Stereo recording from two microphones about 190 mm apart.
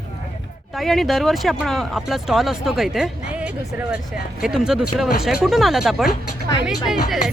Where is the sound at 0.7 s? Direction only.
Centre (ahead or behind).